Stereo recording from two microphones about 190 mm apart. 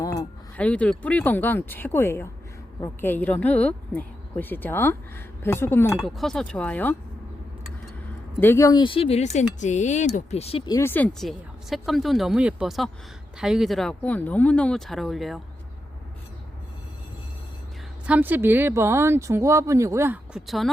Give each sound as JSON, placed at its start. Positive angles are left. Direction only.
{"t": 0.0, "sound": "chink", "side_deg": 20}
{"t": 0.6, "sound": "speech", "side_deg": 5}
{"t": 6.1, "sound": "speech", "side_deg": 0}
{"t": 8.4, "sound": "speech", "side_deg": 15}
{"t": 10.7, "sound": "speech", "side_deg": 15}
{"t": 18.0, "sound": "speech", "side_deg": -10}
{"t": 20.3, "sound": "speech", "side_deg": 0}